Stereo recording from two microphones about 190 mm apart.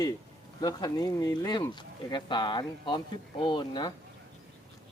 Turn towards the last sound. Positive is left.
turn(degrees=25)  # may be behind; listen again after turning